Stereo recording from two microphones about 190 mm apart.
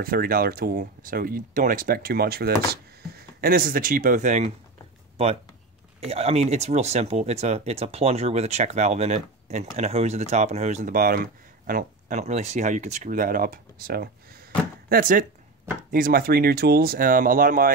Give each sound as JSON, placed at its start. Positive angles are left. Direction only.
{"t": 0.0, "sound": "speech", "side_deg": -50}